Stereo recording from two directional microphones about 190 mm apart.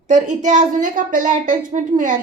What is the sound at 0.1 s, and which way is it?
A woman's voice, 40° right (ahead or behind).